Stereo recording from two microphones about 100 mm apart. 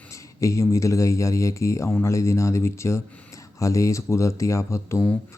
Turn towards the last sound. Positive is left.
turn(degrees=30)  # may be behind; listen again after turning